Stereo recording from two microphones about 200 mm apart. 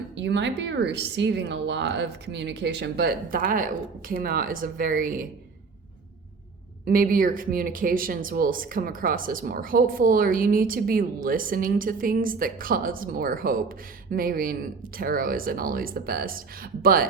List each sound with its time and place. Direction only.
0.2 s speech: 65° right (ahead or behind); by 5.3 s 45° right (ahead or behind)
6.8 s speech: 45° right (ahead or behind)